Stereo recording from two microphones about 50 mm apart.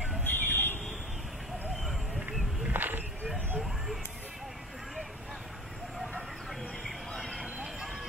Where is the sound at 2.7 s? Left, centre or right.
Right.